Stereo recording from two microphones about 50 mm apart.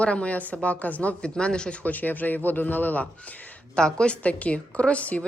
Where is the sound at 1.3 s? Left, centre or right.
Centre.